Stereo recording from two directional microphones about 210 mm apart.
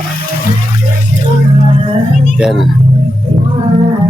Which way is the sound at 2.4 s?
Centre (ahead or behind).